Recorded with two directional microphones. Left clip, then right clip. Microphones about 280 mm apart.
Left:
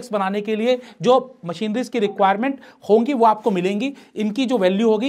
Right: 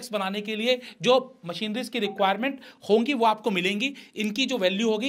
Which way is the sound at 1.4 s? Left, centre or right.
Left.